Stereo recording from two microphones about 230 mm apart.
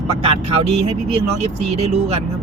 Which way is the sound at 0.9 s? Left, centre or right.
Right.